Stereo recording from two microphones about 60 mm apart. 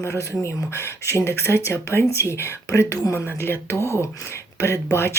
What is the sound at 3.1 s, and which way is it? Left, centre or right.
Speech, left.